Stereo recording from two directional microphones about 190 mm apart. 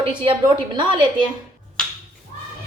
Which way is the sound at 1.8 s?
5° left (ahead or behind).